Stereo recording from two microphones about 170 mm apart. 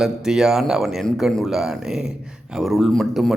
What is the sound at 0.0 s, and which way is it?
Speech, centre (ahead or behind).